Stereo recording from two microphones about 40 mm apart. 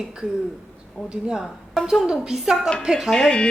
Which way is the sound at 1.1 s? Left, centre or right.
Right.